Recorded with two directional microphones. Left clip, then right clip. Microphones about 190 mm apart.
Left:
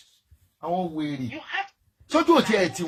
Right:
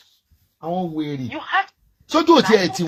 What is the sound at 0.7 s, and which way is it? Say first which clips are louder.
Speech: right 3 dB; 45° right (ahead or behind).